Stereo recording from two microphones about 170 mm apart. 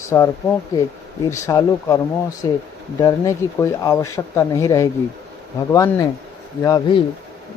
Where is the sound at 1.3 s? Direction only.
15° left (ahead or behind).